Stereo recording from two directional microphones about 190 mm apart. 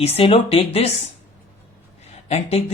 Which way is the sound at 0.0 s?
30° left (ahead or behind).